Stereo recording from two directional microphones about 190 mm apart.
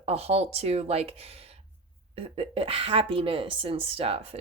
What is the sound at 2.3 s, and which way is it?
Speech, 30° right (ahead or behind).